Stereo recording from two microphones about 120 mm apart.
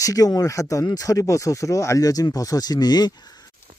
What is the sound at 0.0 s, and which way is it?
Speech, 30° left (ahead or behind).